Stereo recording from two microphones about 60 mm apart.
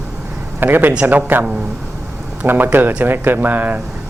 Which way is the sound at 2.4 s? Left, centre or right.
Right.